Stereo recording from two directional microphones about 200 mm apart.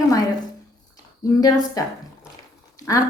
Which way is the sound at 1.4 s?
15° left (ahead or behind).